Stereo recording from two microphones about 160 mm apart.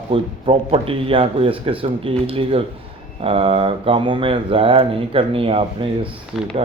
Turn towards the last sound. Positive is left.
turn(degrees=0)  # may be behind; listen again after turning